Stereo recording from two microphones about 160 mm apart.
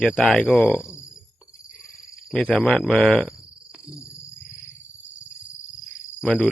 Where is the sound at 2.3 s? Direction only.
5° left (ahead or behind).